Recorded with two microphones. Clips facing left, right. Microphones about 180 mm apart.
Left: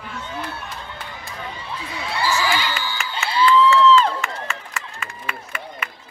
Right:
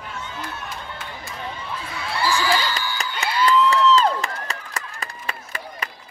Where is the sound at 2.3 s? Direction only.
35° right (ahead or behind).